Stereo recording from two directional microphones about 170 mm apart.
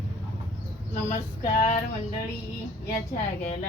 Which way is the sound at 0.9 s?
40° left (ahead or behind).